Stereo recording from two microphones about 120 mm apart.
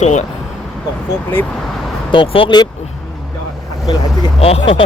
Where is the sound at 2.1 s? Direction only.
45° left (ahead or behind).